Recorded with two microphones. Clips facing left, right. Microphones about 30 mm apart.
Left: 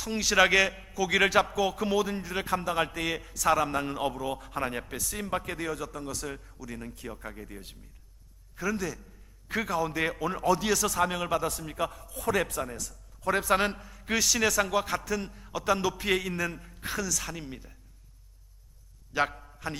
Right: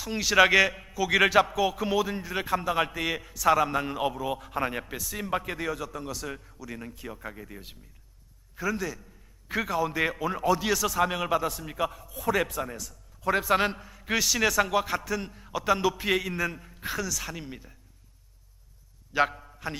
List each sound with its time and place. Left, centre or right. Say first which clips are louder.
0.0 s a man's voice: right 2 dB; centre
19.1 s a man's voice: right 3 dB; centre